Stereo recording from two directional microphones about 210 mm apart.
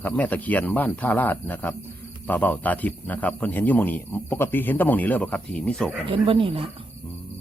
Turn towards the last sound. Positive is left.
turn(degrees=-25)  # may be behind; listen again after turning